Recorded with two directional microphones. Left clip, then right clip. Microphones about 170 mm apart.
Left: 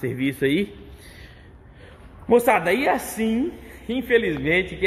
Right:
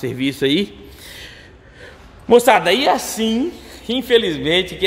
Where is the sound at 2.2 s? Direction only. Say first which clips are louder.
Right 6 dB; 15° right (ahead or behind).